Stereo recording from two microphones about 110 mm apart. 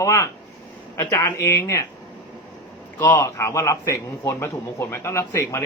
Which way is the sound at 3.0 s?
25° left (ahead or behind).